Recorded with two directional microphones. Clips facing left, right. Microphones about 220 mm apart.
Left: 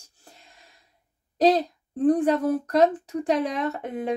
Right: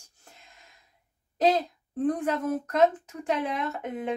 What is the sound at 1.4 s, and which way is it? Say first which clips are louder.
Speech: left 4 dB; 35° left (ahead or behind).